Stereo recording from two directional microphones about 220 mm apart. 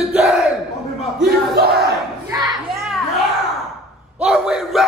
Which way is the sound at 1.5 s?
45° right (ahead or behind).